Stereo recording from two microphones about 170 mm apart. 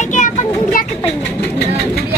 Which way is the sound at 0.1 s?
45° left (ahead or behind).